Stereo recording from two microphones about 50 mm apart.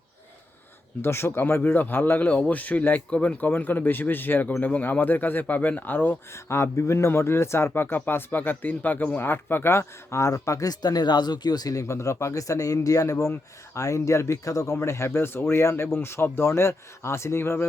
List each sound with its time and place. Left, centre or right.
1.0 s speech: left
2.2 s speech: left
3.4 s speech: left
6.3 s speech: left
7.7 s speech: left
11.8 s speech: left